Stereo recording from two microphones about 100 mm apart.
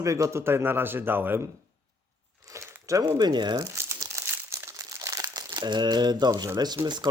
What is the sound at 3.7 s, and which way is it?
Crumpling, 30° right (ahead or behind).